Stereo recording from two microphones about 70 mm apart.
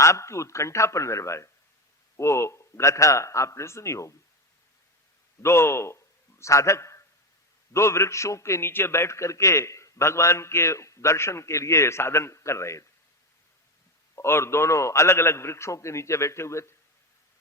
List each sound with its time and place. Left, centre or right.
0.0 s a man's voice: left
5.4 s a man's voice: left
14.2 s a man's voice: left